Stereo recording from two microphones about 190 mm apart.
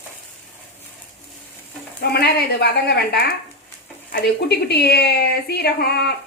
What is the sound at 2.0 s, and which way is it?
A woman's voice, 60° left (ahead or behind).